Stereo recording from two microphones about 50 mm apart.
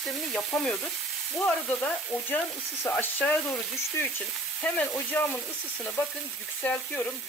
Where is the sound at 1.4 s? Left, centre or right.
Left.